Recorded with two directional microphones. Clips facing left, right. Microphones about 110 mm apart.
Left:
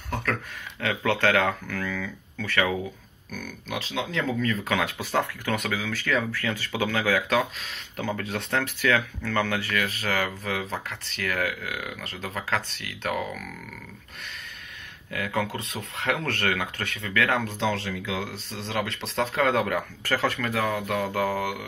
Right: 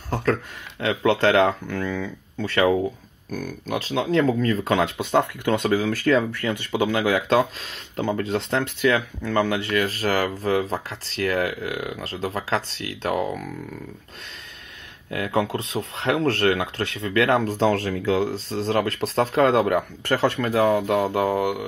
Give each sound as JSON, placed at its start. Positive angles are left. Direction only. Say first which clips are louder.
{"t": 0.1, "sound": "speech", "louder": "right 6 dB", "side_deg": -30}
{"t": 3.3, "sound": "speech", "louder": "right 7 dB", "side_deg": -40}
{"t": 6.1, "sound": "speech", "louder": "right 5 dB", "side_deg": -20}
{"t": 15.0, "sound": "speech", "louder": "right 5 dB", "side_deg": -30}